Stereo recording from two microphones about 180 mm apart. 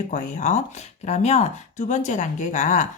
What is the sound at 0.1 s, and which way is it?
Speech, 40° left (ahead or behind).